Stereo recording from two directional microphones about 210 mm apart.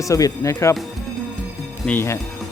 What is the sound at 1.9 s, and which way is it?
Speech, 10° left (ahead or behind).